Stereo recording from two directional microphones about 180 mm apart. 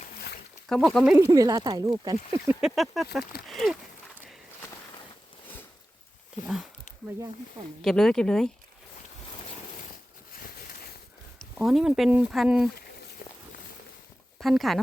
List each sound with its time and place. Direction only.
0.7 s speech: centre (ahead or behind)
1.1 s speech: 15° right (ahead or behind)
2.6 s speech: centre (ahead or behind)
6.4 s speech: 5° right (ahead or behind)
7.8 s speech: 5° left (ahead or behind)
11.3 s speech: centre (ahead or behind)
13.2 s walk: 45° left (ahead or behind)
14.3 s speech: centre (ahead or behind)